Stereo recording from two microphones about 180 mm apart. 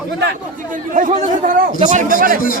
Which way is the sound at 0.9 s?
45° right (ahead or behind).